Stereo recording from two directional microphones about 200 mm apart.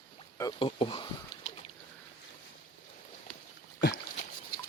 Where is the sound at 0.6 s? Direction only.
25° left (ahead or behind).